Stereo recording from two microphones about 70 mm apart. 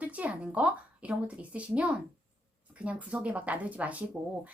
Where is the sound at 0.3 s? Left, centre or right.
Centre.